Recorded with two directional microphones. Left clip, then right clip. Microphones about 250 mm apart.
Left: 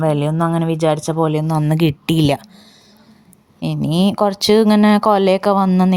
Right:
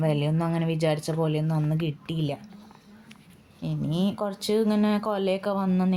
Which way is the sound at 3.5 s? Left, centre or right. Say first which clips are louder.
Left 11 dB; left.